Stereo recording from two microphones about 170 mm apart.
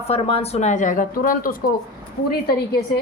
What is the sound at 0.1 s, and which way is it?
Speech, 35° left (ahead or behind).